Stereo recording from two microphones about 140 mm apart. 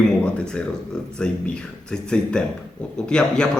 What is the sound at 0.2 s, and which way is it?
A man's voice, 10° left (ahead or behind).